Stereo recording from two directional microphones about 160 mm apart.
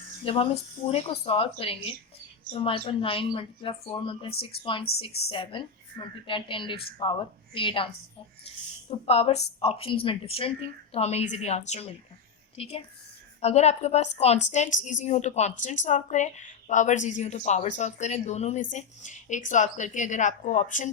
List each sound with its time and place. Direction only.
0.3 s a woman's voice: 35° left (ahead or behind)
9.0 s a woman's voice: 40° left (ahead or behind)